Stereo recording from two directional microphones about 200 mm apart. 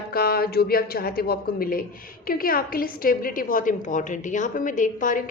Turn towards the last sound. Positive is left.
turn(degrees=40)  # may be behind; listen again after turning